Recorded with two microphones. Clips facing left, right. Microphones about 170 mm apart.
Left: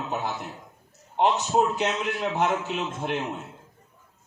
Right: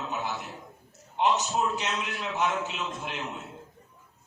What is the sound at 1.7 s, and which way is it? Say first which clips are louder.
A man's voice: left 6 dB; 60° left (ahead or behind).